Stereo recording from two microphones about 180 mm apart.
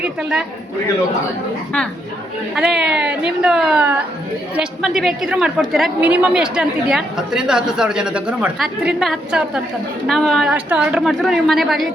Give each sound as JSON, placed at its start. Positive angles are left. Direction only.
{"t": 0.0, "sound": "a woman's voice", "side_deg": -5}
{"t": 2.6, "sound": "a woman's voice", "side_deg": -5}